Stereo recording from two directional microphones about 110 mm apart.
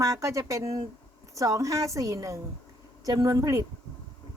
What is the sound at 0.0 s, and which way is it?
A woman's voice, 30° right (ahead or behind).